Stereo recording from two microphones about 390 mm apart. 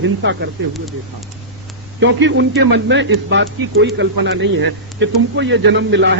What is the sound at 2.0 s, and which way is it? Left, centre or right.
Speech, right.